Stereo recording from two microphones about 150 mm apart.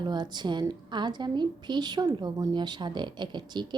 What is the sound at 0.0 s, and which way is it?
A woman's voice, 30° right (ahead or behind).